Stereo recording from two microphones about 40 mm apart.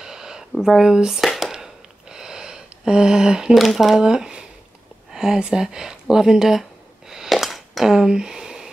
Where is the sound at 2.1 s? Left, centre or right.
Centre.